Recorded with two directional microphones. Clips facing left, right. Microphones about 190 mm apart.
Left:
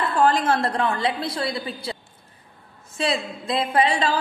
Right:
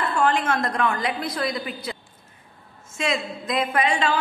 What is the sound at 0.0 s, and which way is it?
A woman's voice, 35° left (ahead or behind).